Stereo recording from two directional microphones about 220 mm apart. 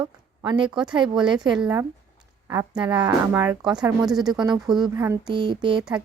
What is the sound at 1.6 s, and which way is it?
Speech, 10° right (ahead or behind).